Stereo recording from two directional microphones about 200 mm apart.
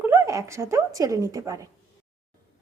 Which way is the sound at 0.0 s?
15° right (ahead or behind).